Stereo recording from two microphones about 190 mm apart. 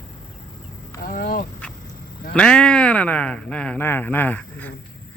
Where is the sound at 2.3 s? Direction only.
5° left (ahead or behind).